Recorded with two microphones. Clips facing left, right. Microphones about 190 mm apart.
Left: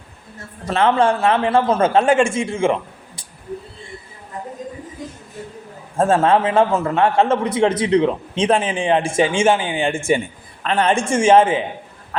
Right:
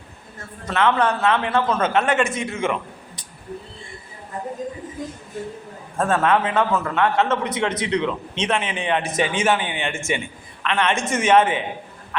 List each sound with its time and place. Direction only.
0.7 s a man's voice: 30° left (ahead or behind)
6.0 s a man's voice: 25° left (ahead or behind)